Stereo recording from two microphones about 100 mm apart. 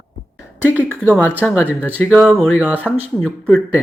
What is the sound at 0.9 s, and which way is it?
Speech, 20° right (ahead or behind).